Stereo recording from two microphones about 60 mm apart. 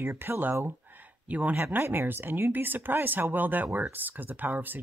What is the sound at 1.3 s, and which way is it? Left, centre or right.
Speech, right.